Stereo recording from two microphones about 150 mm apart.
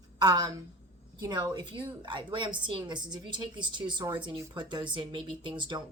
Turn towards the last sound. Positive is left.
turn(degrees=-30)  # may be behind; listen again after turning